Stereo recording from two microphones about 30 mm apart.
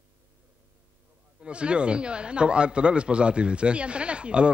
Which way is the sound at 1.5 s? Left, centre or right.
Right.